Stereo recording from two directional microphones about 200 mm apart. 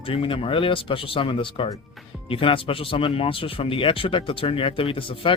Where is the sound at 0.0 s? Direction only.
25° left (ahead or behind).